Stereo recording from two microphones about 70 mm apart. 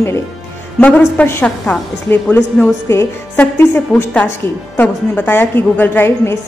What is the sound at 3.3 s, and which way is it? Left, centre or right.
A woman's voice, left.